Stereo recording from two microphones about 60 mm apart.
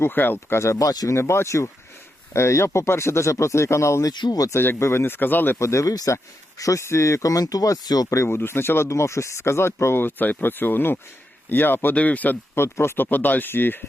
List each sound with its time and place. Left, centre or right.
0.0 s speech: left
0.6 s speech: left
0.9 s speech: left
1.1 s speech: left
4.0 s speech: left
4.5 s speech: left
5.5 s speech: left
5.9 s speech: left
6.6 s speech: left
8.2 s speech: left
8.9 s speech: left
12.5 s speech: left